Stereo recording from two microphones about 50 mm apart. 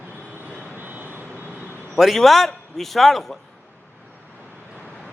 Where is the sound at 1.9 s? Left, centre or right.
Centre.